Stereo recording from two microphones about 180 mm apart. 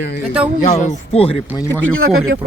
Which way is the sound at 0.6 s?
40° left (ahead or behind).